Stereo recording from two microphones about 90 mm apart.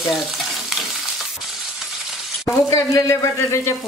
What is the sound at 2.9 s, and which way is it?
Speech, 35° left (ahead or behind).